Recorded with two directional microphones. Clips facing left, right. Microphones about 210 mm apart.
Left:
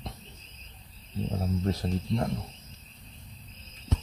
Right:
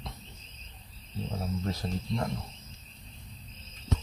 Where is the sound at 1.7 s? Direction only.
30° left (ahead or behind).